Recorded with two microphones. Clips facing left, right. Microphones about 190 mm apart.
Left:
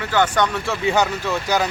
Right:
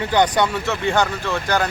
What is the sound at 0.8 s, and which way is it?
Speech, 5° left (ahead or behind).